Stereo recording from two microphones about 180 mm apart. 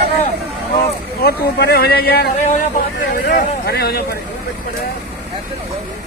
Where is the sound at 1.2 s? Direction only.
60° left (ahead or behind).